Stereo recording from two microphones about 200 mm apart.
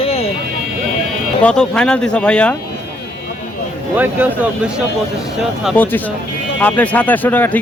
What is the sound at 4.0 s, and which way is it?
Speech, 10° right (ahead or behind).